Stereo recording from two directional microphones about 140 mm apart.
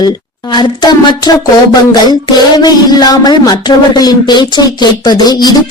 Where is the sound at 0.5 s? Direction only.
30° left (ahead or behind).